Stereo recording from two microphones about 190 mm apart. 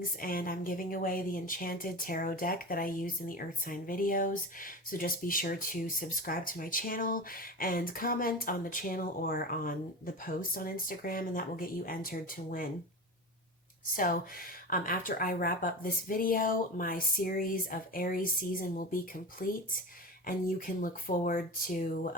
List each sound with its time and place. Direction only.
0.2 s speech: 50° left (ahead or behind)
13.9 s speech: 45° left (ahead or behind)
19.4 s speech: 45° left (ahead or behind)